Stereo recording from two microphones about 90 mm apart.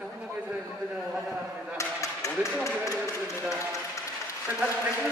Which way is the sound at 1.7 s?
35° left (ahead or behind).